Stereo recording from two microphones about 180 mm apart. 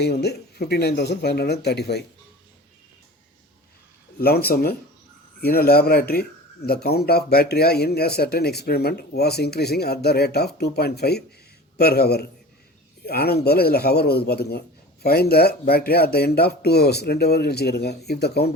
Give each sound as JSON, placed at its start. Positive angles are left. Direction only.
{"t": 0.0, "sound": "speech", "side_deg": 65}
{"t": 4.2, "sound": "speech", "side_deg": 60}